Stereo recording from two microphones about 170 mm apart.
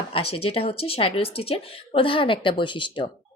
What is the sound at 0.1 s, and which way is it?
Speech, 35° left (ahead or behind).